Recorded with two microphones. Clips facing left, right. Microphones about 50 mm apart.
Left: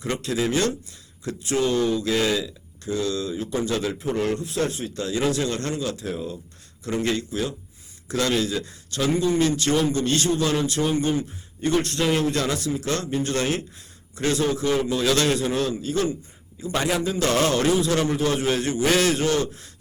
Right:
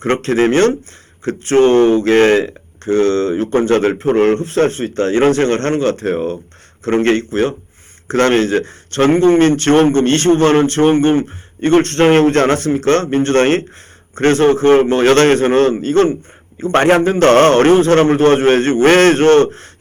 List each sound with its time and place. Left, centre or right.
0.0 s speech: right